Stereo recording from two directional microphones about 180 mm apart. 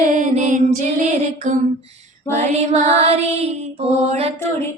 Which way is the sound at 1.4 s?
40° right (ahead or behind).